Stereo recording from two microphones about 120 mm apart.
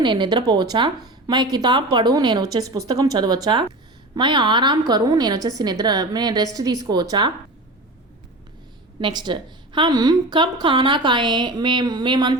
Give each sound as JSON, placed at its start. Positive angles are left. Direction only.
{"t": 0.0, "sound": "a woman's voice", "side_deg": -40}
{"t": 9.0, "sound": "a woman's voice", "side_deg": -40}